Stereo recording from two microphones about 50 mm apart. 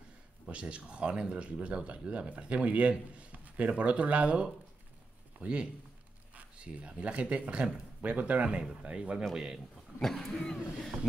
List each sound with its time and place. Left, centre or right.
0.5 s speech: right
9.2 s speech: centre
9.9 s speech: centre